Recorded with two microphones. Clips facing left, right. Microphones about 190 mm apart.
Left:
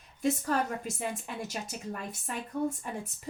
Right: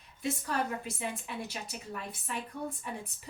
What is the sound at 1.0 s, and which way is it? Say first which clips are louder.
A woman's voice: left 2 dB; 45° left (ahead or behind).